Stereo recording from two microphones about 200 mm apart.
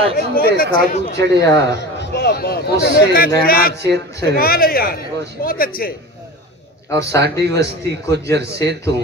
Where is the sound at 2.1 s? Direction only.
55° left (ahead or behind).